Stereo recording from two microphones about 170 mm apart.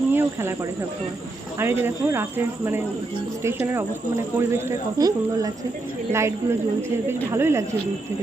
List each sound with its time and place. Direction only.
0.1 s snake: 10° right (ahead or behind)
1.5 s speech: 15° right (ahead or behind)
4.4 s speech: 15° right (ahead or behind)